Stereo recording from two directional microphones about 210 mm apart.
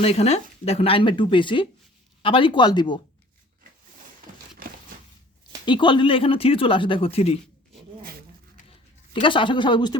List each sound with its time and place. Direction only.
0.0 s speech: 30° left (ahead or behind)
5.6 s speech: 20° left (ahead or behind)
9.2 s speech: 25° left (ahead or behind)